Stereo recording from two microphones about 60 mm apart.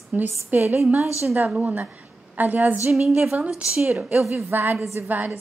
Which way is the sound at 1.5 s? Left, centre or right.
Right.